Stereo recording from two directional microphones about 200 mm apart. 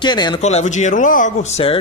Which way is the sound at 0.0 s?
20° left (ahead or behind).